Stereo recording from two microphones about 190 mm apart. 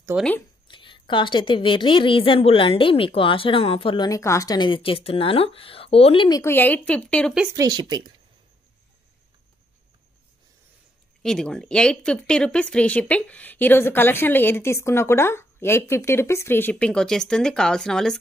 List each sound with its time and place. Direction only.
0.1 s speech: 10° right (ahead or behind)
0.7 s a woman's voice: 25° left (ahead or behind); by 7.3 s 5° left (ahead or behind)
7.5 s speech: 20° right (ahead or behind)
11.2 s speech: 5° left (ahead or behind)